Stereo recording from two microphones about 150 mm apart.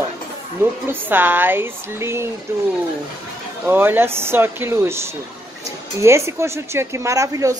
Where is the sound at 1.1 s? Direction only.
15° right (ahead or behind).